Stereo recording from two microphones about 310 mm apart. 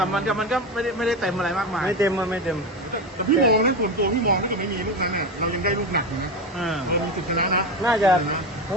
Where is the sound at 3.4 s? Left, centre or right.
Right.